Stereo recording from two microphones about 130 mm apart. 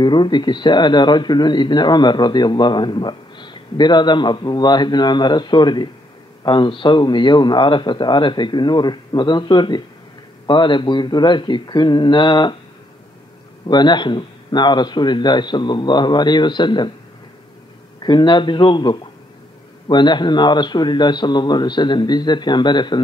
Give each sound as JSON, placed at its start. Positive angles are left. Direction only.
{"t": 0.0, "sound": "a man's voice", "side_deg": 35}
{"t": 13.7, "sound": "a man's voice", "side_deg": 35}
{"t": 18.0, "sound": "a man's voice", "side_deg": 35}